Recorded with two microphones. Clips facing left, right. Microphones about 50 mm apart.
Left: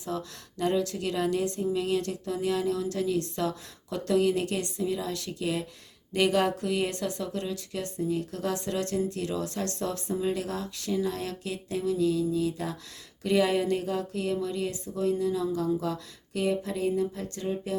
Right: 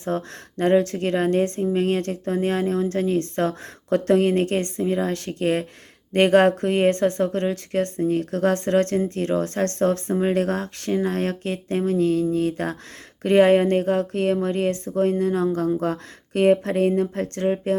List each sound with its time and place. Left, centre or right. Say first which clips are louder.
0.0 s speech: right 8 dB; right